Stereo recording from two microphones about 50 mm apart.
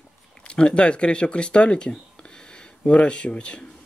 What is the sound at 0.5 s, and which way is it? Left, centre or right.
Speech, centre.